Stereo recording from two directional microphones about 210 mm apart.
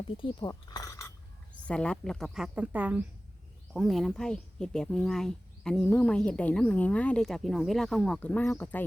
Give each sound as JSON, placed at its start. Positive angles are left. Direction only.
{"t": 0.2, "sound": "cutlery", "side_deg": 25}
{"t": 1.6, "sound": "speech", "side_deg": 5}